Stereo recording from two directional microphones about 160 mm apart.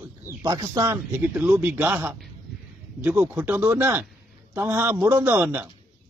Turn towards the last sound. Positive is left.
turn(degrees=-10)  # may be behind; listen again after turning